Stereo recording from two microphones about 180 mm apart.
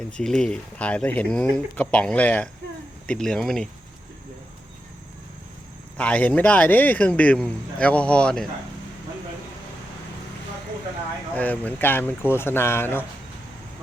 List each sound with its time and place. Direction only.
0.2 s speech: 5° left (ahead or behind)
6.0 s speech: 5° left (ahead or behind)
11.3 s speech: 10° left (ahead or behind)